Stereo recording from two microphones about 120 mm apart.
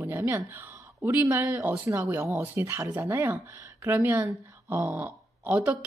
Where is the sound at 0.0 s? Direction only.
15° right (ahead or behind).